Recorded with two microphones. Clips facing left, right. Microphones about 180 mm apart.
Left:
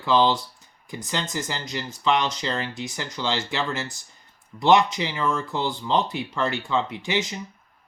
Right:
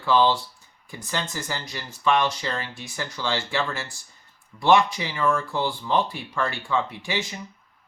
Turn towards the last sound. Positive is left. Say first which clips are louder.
# left 3 dB
turn(degrees=20)  # may be behind; listen again after turning